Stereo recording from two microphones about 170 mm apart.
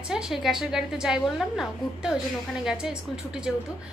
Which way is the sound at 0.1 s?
5° right (ahead or behind).